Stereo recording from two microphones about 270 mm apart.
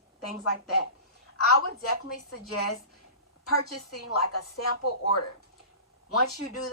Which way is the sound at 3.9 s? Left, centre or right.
Left.